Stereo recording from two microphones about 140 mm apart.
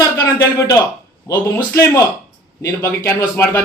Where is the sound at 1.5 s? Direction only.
20° left (ahead or behind).